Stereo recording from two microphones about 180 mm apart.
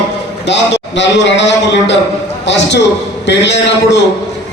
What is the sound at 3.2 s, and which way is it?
Speech, 75° left (ahead or behind).